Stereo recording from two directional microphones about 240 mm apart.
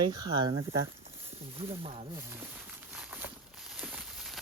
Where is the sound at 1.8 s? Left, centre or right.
Right.